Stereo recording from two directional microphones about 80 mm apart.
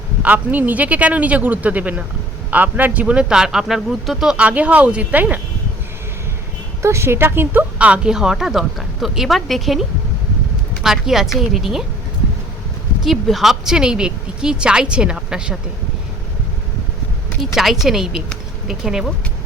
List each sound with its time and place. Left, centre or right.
0.2 s a man's voice: centre
6.8 s a woman's voice: right
7.8 s speech: centre
10.8 s speech: centre
13.1 s speech: centre
17.4 s speech: centre